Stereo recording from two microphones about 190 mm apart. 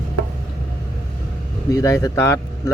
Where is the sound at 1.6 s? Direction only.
15° left (ahead or behind).